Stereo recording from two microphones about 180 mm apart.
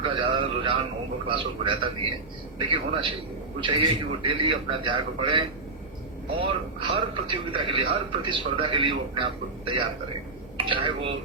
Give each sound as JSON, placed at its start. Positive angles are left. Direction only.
{"t": 0.0, "sound": "a man's voice", "side_deg": -30}
{"t": 10.6, "sound": "a man's voice", "side_deg": -30}